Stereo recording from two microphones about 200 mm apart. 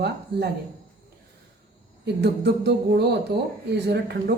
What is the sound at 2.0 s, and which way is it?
Speech, 55° right (ahead or behind).